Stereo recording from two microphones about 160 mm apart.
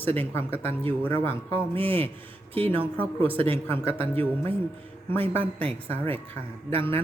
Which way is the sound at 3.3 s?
35° right (ahead or behind).